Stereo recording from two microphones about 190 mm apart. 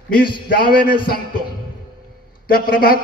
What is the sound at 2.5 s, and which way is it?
Speech, 50° left (ahead or behind).